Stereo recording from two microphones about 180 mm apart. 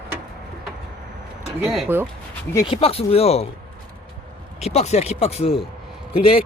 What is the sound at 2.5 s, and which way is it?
Speech, 30° left (ahead or behind).